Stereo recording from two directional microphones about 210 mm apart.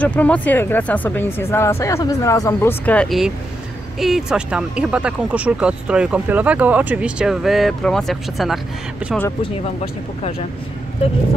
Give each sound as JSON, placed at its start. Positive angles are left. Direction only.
{"t": 0.0, "sound": "speech", "side_deg": 5}
{"t": 9.4, "sound": "speech", "side_deg": 30}